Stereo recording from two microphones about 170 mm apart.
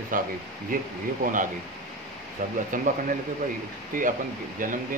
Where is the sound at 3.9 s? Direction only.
55° right (ahead or behind).